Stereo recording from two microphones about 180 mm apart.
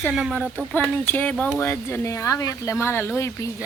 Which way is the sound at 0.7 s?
10° left (ahead or behind).